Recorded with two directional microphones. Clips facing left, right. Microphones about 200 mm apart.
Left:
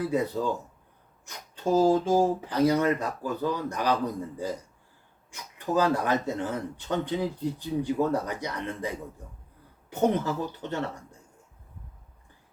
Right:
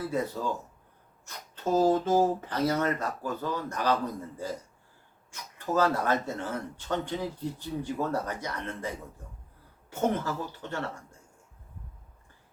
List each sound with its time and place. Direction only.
0.1 s speech: 15° left (ahead or behind)
9.9 s speech: 20° left (ahead or behind)